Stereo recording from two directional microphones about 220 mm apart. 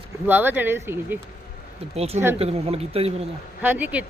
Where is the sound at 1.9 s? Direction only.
30° right (ahead or behind).